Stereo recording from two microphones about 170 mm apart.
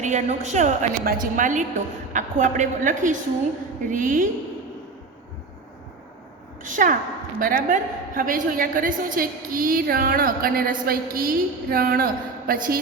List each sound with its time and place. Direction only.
0.0 s a woman's voice: 45° right (ahead or behind)
6.6 s a woman's voice: 50° right (ahead or behind)